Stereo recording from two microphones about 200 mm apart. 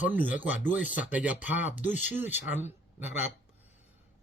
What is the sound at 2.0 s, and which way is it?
Speech, 10° right (ahead or behind).